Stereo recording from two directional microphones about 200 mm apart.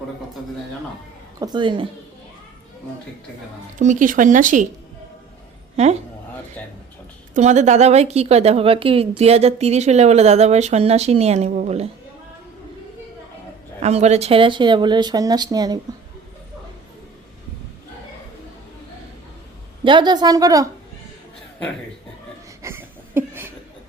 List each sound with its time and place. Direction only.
1.4 s speech: 20° right (ahead or behind)
3.8 s a woman's voice: 40° right (ahead or behind)
5.7 s a woman's voice: 35° right (ahead or behind)
7.3 s a woman's voice: 35° right (ahead or behind)
13.7 s speech: 30° right (ahead or behind)
19.8 s speech: 25° right (ahead or behind)
22.6 s a sound: 10° right (ahead or behind)